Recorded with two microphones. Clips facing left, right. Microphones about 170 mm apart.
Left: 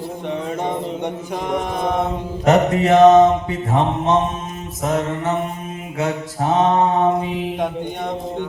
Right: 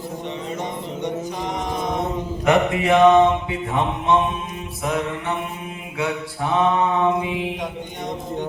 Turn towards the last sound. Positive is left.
turn(degrees=40)  # may be behind; listen again after turning